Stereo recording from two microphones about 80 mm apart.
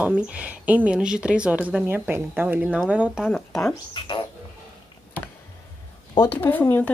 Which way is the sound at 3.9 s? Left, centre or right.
Left.